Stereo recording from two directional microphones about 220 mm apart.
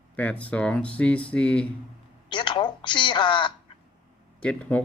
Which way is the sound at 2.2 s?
20° left (ahead or behind).